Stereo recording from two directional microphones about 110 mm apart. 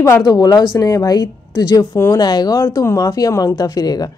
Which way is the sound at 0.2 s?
35° left (ahead or behind).